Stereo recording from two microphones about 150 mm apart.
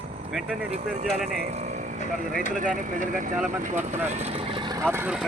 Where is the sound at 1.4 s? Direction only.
50° right (ahead or behind).